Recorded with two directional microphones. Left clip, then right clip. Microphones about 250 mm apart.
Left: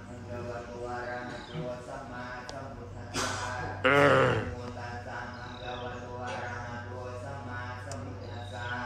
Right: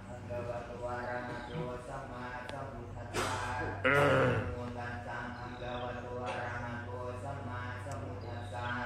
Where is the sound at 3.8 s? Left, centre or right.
Left.